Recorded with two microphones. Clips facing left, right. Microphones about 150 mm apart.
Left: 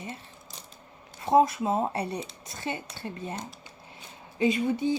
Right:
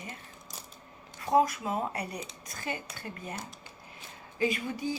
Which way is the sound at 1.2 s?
25° left (ahead or behind).